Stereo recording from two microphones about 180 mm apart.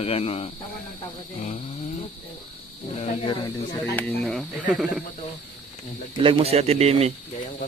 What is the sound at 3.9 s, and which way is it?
Speech, 5° left (ahead or behind).